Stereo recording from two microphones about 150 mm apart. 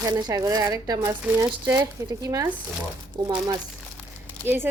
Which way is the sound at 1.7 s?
25° right (ahead or behind).